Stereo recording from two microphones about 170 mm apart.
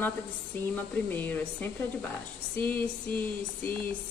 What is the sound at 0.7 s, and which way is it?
A woman's voice, 10° left (ahead or behind).